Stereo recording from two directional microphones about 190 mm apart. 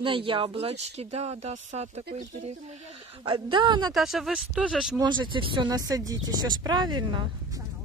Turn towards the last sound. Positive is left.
turn(degrees=-20)  # may be behind; listen again after turning